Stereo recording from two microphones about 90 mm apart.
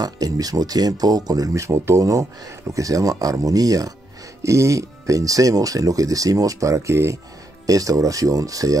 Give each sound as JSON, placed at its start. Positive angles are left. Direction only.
{"t": 0.0, "sound": "speech", "side_deg": -45}